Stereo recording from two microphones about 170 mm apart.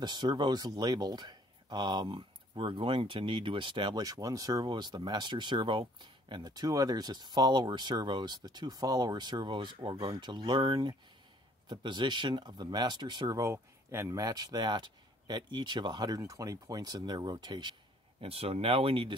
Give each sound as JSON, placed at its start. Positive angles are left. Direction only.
{"t": 0.0, "sound": "speech", "side_deg": -25}